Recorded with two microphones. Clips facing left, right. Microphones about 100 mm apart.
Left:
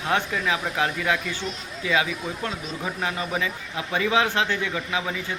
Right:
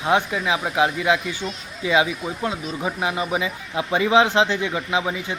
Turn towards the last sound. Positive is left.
turn(degrees=-20)  # may be behind; listen again after turning